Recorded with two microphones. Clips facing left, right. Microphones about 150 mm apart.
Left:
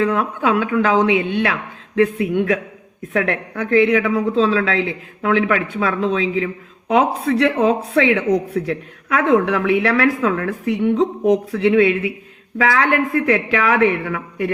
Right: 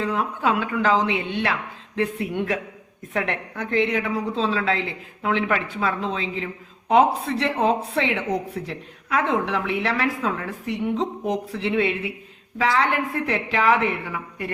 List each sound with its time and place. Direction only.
0.0 s speech: 65° left (ahead or behind)